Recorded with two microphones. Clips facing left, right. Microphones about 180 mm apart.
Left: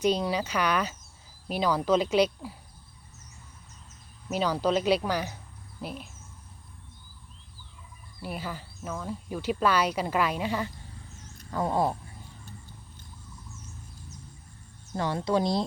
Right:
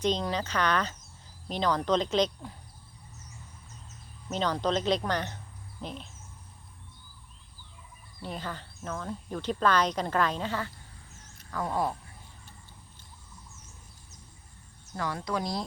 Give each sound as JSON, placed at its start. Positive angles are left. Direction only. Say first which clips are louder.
{"t": 0.0, "sound": "speech", "louder": "left 3 dB", "side_deg": 10}
{"t": 4.3, "sound": "speech", "louder": "left 2 dB", "side_deg": 10}
{"t": 8.2, "sound": "speech", "louder": "left 1 dB", "side_deg": 10}
{"t": 11.5, "sound": "speech", "louder": "left 4 dB", "side_deg": 25}
{"t": 14.9, "sound": "speech", "louder": "left 6 dB", "side_deg": 25}